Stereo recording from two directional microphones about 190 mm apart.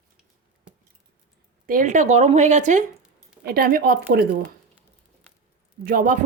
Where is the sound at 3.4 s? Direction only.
55° right (ahead or behind).